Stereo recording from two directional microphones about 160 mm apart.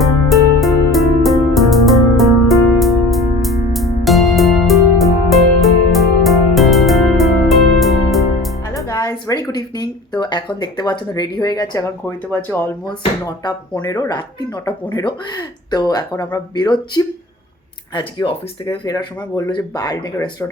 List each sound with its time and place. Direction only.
0.0 s music: centre (ahead or behind)
8.7 s speech: 20° left (ahead or behind)